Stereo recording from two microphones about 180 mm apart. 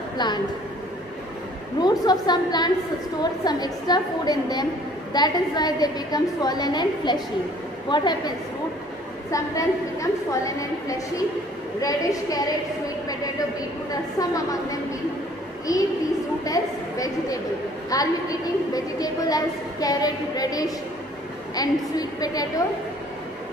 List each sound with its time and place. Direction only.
1.8 s a woman's voice: 25° left (ahead or behind)
9.3 s a woman's voice: 20° left (ahead or behind)
14.3 s a woman's voice: 20° left (ahead or behind)